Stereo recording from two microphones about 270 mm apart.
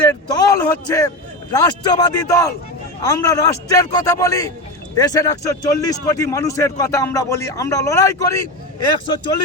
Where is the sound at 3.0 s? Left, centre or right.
Centre.